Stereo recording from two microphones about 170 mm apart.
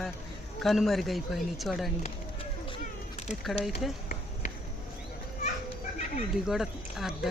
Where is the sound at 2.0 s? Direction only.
30° left (ahead or behind).